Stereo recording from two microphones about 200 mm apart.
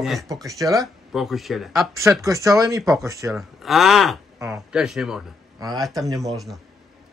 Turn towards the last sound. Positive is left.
turn(degrees=0)  # may be behind; listen again after turning